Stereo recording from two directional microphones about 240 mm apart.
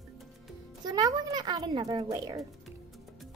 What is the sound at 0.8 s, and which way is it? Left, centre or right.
A child's voice, centre.